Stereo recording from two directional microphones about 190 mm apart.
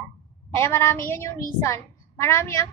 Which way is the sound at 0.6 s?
10° left (ahead or behind).